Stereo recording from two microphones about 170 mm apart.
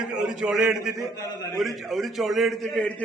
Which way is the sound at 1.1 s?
25° left (ahead or behind).